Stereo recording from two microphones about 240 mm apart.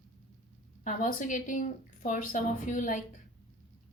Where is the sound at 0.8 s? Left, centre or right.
Left.